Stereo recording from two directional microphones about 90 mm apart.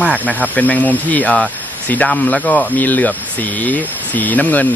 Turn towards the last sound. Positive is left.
turn(degrees=20)  # may be behind; listen again after turning